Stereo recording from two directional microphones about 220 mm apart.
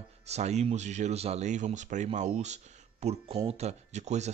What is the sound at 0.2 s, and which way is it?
Speech, 30° right (ahead or behind).